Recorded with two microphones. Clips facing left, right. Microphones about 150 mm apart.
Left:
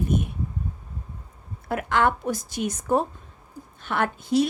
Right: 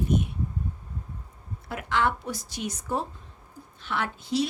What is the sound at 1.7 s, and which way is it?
A woman's voice, 50° left (ahead or behind).